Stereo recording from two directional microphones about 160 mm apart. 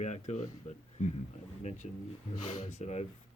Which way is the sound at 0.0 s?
45° left (ahead or behind).